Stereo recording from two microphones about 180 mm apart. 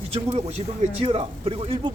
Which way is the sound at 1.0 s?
30° right (ahead or behind).